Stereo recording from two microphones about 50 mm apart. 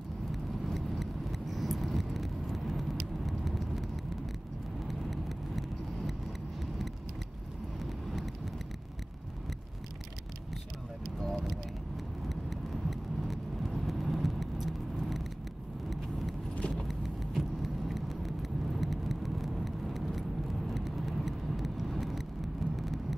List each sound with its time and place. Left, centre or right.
0.3 s vehicle: centre
7.8 s vehicle: centre
11.3 s vehicle: centre
16.7 s vehicle: centre